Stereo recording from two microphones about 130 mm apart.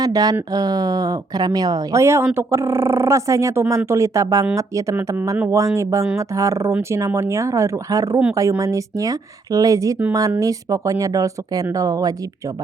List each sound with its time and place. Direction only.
0.0 s a woman's voice: 30° right (ahead or behind)